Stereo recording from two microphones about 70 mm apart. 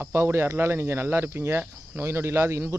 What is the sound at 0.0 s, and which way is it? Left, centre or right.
Speech, right.